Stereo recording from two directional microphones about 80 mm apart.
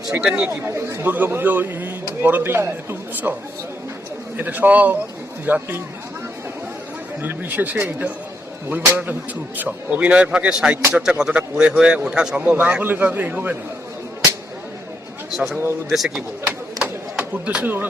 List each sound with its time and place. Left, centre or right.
0.1 s speech: centre
0.5 s speech: right
4.4 s speech: right
7.2 s speech: right
15.3 s speech: centre; by 17.8 s right